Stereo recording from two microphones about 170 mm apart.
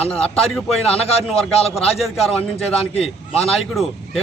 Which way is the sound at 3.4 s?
Centre (ahead or behind).